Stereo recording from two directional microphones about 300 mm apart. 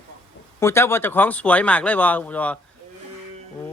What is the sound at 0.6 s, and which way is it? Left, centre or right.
Speech, centre.